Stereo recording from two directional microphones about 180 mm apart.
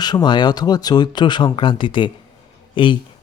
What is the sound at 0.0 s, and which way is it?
Speech, 25° left (ahead or behind).